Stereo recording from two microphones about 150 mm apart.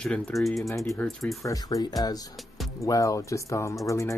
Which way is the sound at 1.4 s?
20° left (ahead or behind).